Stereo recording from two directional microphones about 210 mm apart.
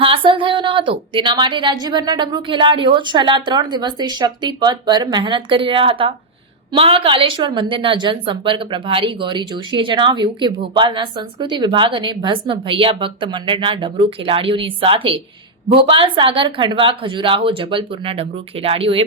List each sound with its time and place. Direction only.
0.0 s a woman's voice: 25° right (ahead or behind)